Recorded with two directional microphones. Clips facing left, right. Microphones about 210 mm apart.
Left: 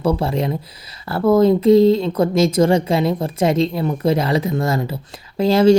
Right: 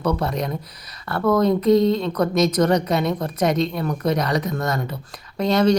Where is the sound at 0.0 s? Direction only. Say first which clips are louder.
Left 4 dB; 30° left (ahead or behind).